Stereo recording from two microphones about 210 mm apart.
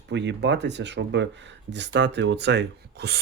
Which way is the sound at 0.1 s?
55° right (ahead or behind).